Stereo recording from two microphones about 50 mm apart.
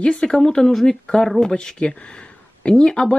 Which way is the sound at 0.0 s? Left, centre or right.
Centre.